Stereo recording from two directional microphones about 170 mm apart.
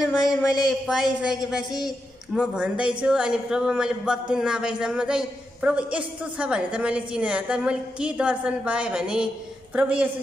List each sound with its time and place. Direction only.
0.4 s a man's voice: centre (ahead or behind)